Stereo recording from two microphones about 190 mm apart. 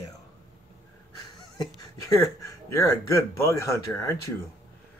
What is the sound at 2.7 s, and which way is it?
Speech, 15° left (ahead or behind).